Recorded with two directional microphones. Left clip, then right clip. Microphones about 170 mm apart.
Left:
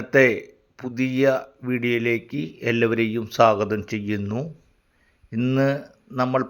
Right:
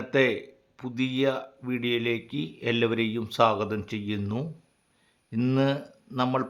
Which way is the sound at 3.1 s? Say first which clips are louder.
Left 7 dB; 15° left (ahead or behind).